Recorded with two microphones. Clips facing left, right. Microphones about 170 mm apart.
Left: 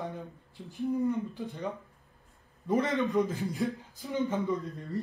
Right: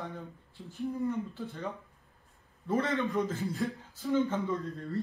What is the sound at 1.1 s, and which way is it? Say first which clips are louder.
A man's voice: left 2 dB; 15° left (ahead or behind).